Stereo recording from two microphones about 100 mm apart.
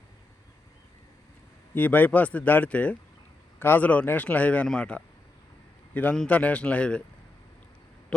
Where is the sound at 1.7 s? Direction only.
20° left (ahead or behind).